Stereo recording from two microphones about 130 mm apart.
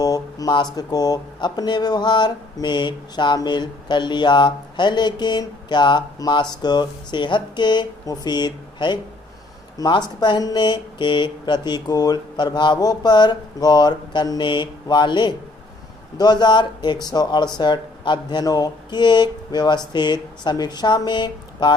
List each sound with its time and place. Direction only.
0.0 s speech: 30° left (ahead or behind)